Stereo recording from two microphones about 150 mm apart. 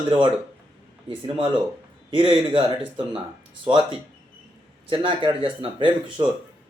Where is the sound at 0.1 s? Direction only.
35° right (ahead or behind).